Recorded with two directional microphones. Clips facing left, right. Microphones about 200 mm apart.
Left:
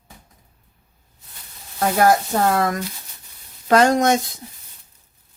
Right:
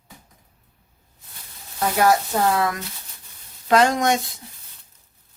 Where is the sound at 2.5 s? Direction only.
45° left (ahead or behind).